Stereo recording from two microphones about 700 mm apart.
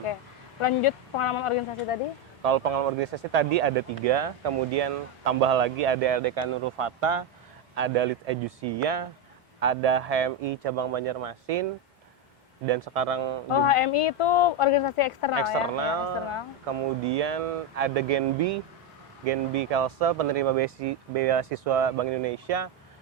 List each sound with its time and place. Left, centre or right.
0.6 s speech: left
2.4 s speech: right
12.6 s speech: right
13.5 s speech: left
15.7 s speech: right